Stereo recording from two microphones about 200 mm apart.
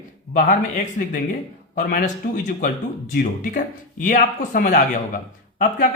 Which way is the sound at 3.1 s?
45° left (ahead or behind).